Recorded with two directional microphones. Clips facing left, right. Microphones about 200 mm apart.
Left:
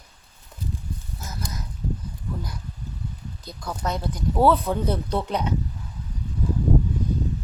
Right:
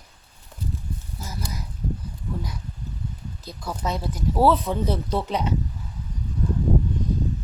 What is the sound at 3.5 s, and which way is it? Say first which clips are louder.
Speech: even; 5° right (ahead or behind).